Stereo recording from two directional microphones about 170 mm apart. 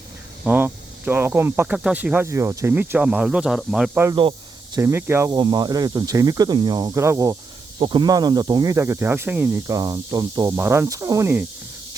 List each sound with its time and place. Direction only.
0.4 s speech: 10° right (ahead or behind)
4.1 s snake: 30° right (ahead or behind)
4.8 s speech: 15° right (ahead or behind)